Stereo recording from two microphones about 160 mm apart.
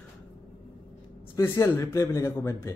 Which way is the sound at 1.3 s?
15° left (ahead or behind).